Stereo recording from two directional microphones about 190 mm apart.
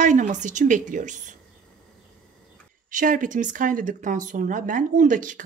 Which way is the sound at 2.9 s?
45° right (ahead or behind).